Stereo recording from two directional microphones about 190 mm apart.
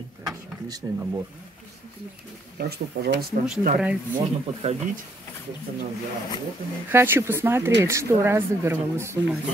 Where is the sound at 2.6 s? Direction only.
60° right (ahead or behind).